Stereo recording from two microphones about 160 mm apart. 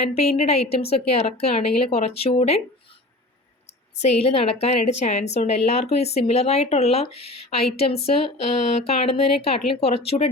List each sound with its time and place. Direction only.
0.2 s a woman's voice: 40° left (ahead or behind)
3.9 s a woman's voice: 40° left (ahead or behind)